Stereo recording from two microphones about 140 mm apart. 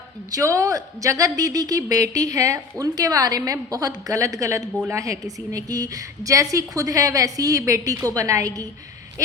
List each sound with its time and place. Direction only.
0.3 s speech: 25° right (ahead or behind)